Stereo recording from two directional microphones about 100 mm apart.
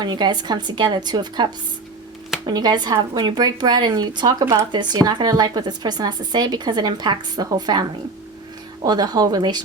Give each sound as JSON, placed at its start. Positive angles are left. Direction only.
{"t": 0.0, "sound": "a woman's voice", "side_deg": -45}
{"t": 2.5, "sound": "a woman's voice", "side_deg": -45}